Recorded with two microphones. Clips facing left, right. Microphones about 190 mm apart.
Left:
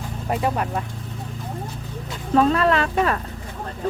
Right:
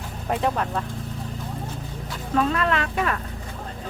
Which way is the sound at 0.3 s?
5° left (ahead or behind).